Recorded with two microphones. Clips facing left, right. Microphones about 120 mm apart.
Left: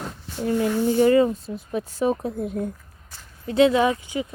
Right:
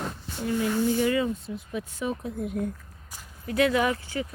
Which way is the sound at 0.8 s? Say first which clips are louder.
Left 10 dB; 35° left (ahead or behind).